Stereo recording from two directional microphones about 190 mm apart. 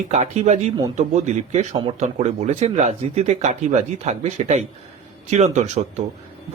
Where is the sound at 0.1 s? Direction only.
35° right (ahead or behind).